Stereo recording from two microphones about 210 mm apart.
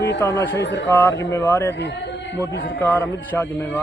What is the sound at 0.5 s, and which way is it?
Speech, 60° left (ahead or behind).